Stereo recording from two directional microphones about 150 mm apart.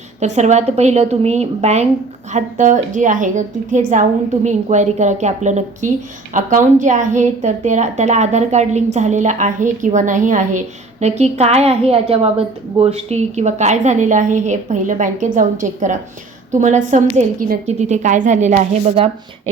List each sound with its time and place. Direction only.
0.2 s a woman's voice: 50° right (ahead or behind)